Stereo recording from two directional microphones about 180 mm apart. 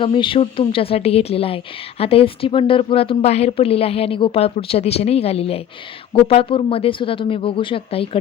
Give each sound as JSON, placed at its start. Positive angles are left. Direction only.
{"t": 0.0, "sound": "a woman's voice", "side_deg": 30}